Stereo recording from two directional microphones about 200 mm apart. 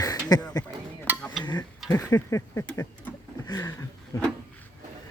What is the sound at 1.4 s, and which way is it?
Speech, 25° left (ahead or behind).